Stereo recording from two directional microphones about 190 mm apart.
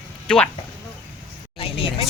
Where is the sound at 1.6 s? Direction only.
30° left (ahead or behind).